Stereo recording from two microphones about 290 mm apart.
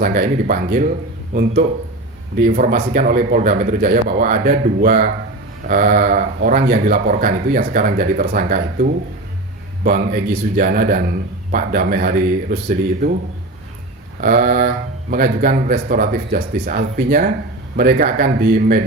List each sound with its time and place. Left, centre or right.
0.0 s speech: right
14.2 s speech: right